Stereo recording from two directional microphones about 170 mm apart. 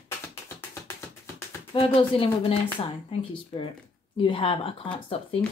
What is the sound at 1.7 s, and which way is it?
Speech, 30° left (ahead or behind).